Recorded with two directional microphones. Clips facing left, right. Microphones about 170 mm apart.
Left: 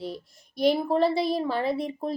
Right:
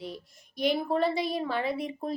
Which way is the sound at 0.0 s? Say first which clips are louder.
Left 4 dB; 35° left (ahead or behind).